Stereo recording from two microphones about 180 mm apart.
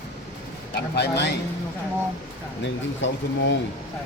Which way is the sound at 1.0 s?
70° left (ahead or behind).